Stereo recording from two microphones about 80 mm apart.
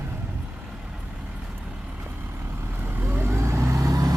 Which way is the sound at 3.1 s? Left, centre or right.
Right.